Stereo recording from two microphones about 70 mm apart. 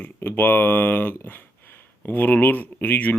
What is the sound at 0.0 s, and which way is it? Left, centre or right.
Mantra, left.